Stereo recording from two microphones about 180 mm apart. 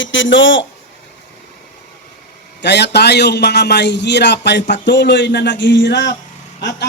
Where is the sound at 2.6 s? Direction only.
70° left (ahead or behind).